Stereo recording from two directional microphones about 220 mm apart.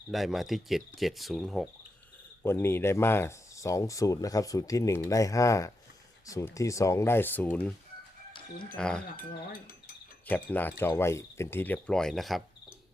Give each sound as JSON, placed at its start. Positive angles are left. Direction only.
{"t": 0.1, "sound": "speech", "side_deg": 0}
{"t": 8.8, "sound": "speech", "side_deg": 5}
{"t": 9.1, "sound": "cutlery", "side_deg": 40}
{"t": 10.2, "sound": "speech", "side_deg": 10}